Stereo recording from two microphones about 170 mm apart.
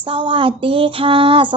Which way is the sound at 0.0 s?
30° right (ahead or behind).